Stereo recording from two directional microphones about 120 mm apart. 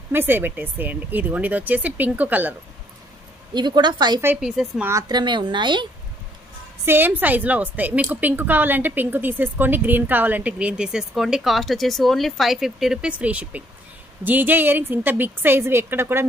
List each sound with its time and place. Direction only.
0.1 s a woman's voice: 15° right (ahead or behind)
3.5 s a woman's voice: 35° right (ahead or behind)
4.4 s a woman's voice: 5° right (ahead or behind)
5.0 s a woman's voice: 40° right (ahead or behind)
6.9 s a woman's voice: 15° right (ahead or behind)